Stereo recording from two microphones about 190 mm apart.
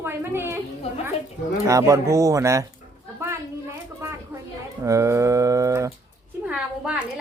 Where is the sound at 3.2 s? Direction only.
15° right (ahead or behind).